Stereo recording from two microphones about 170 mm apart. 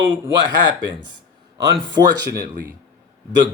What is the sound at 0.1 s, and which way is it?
Speech, 25° right (ahead or behind).